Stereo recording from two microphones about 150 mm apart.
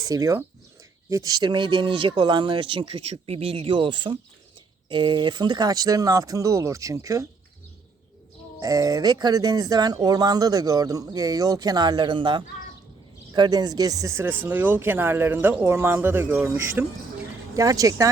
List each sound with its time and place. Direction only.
0.0 s speech: 20° right (ahead or behind)
8.6 s speech: 25° right (ahead or behind)